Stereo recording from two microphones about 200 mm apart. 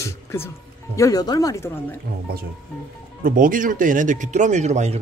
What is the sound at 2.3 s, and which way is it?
Speech, 50° right (ahead or behind).